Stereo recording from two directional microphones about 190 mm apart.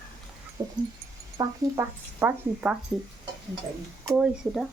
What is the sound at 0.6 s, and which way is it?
Dog, 20° right (ahead or behind).